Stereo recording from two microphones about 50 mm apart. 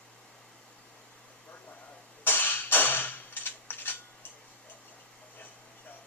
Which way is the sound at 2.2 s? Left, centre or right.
Left.